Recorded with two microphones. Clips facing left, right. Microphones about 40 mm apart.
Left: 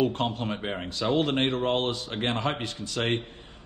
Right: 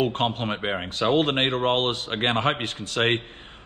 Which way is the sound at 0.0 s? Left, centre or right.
Right.